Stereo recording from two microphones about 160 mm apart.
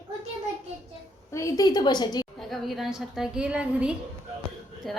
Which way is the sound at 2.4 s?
Centre (ahead or behind).